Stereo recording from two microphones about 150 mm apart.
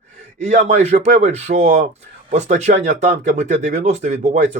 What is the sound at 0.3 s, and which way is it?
Speech, 50° right (ahead or behind).